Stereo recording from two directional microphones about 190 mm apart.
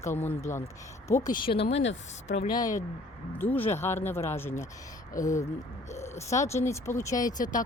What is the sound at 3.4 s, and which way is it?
Speech, 10° left (ahead or behind).